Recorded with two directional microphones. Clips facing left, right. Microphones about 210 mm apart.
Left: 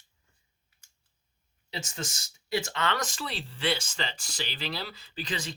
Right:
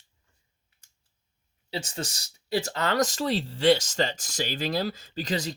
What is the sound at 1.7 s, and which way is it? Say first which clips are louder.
Speech: right 4 dB; 35° right (ahead or behind).